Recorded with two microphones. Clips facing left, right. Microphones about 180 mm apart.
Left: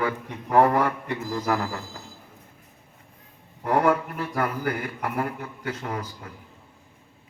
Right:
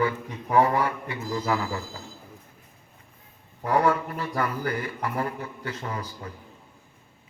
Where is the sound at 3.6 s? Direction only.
50° left (ahead or behind).